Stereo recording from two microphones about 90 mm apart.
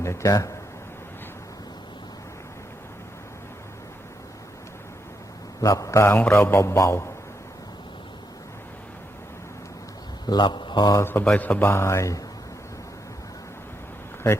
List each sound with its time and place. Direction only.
0.0 s a man's voice: 35° left (ahead or behind)
5.6 s a man's voice: 40° left (ahead or behind)
10.2 s speech: 55° left (ahead or behind)
11.0 s a man's voice: 25° left (ahead or behind)